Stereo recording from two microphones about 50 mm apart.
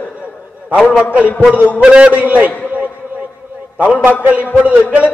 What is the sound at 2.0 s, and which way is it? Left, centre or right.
Speech, right.